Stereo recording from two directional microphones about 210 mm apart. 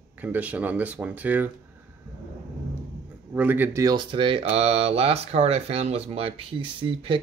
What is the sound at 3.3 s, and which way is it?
Speech, 10° right (ahead or behind).